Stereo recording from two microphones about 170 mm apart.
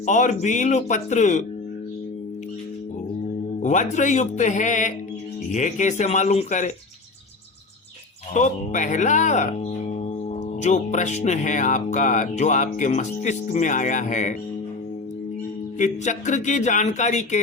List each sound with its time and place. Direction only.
0.0 s speech: 45° left (ahead or behind)
3.6 s speech: 45° left (ahead or behind)
8.3 s speech: 45° left (ahead or behind)
10.6 s speech: 45° left (ahead or behind)
15.8 s speech: 45° left (ahead or behind)